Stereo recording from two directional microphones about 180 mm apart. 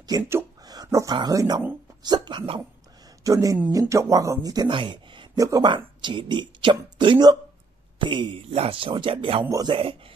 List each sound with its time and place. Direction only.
0.0 s speech: 20° right (ahead or behind)